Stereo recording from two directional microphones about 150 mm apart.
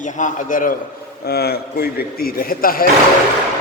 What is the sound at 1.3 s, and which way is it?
A man's voice, 90° left.